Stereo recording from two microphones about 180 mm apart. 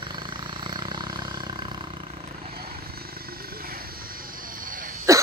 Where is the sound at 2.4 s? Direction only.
55° right (ahead or behind).